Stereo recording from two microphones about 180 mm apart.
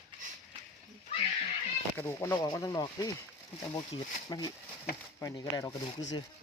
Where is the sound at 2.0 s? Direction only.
15° left (ahead or behind).